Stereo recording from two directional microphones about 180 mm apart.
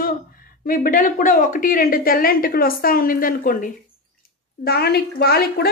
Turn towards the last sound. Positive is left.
turn(degrees=60)  # may be behind; listen again after turning